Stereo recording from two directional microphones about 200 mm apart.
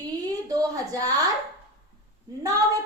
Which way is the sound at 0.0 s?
15° right (ahead or behind).